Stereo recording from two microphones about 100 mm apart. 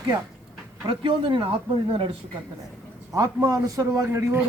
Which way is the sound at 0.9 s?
55° right (ahead or behind).